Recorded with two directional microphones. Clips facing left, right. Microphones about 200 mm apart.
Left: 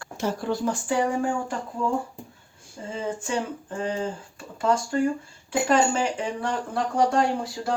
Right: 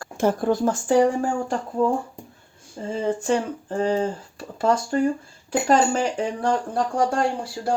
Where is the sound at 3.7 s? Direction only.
35° right (ahead or behind).